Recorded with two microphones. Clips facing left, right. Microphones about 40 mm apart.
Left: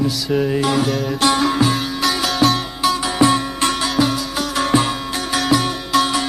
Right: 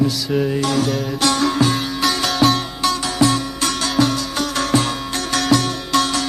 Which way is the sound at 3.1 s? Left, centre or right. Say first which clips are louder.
Left 2 dB; left.